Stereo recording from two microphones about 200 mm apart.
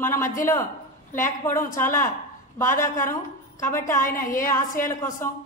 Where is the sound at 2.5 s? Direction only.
15° left (ahead or behind).